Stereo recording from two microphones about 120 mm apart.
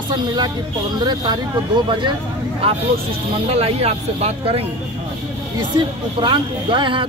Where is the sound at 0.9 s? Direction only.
35° right (ahead or behind); by 4.6 s 55° right (ahead or behind).